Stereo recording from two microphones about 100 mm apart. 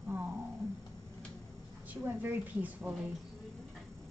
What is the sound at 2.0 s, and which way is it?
Speech, 20° right (ahead or behind).